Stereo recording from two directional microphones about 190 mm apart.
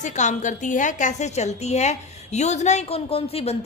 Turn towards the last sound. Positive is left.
turn(degrees=30)  # may be behind; listen again after turning